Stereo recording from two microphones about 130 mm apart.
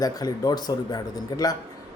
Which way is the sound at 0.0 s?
30° left (ahead or behind).